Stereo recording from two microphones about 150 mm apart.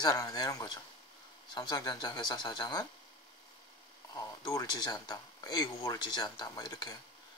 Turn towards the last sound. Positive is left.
turn(degrees=25)  # may be behind; listen again after turning